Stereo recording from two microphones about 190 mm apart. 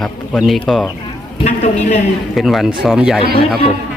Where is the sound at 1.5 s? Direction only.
35° left (ahead or behind).